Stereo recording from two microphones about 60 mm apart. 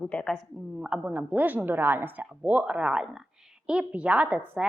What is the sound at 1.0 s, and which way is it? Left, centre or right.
A woman's voice, right.